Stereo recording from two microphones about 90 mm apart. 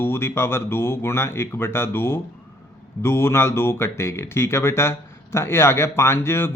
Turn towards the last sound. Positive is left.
turn(degrees=25)  # may be behind; listen again after turning